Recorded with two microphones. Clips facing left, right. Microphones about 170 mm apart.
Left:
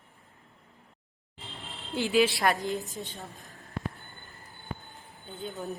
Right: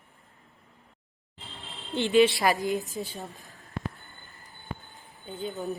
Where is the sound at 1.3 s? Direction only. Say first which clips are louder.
Left 1 dB; 5° left (ahead or behind).